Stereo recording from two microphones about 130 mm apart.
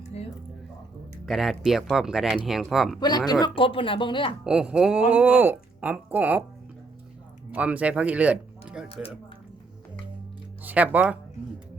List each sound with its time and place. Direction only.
0.1 s a sound: 55° left (ahead or behind)
1.2 s speech: centre (ahead or behind)
3.0 s speech: 30° left (ahead or behind)
4.4 s speech: 5° right (ahead or behind)
7.5 s speech: 10° right (ahead or behind)
10.6 s speech: 10° right (ahead or behind)